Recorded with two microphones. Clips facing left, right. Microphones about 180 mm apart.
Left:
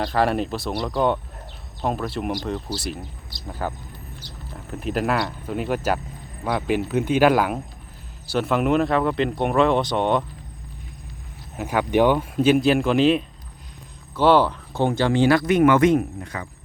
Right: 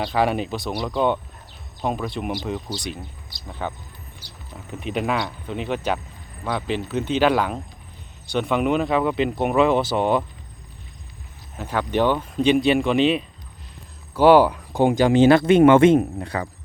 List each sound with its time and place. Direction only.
0.0 s speech: centre (ahead or behind)
11.5 s speech: 10° left (ahead or behind)
14.2 s speech: 10° right (ahead or behind); by 16.4 s 35° right (ahead or behind)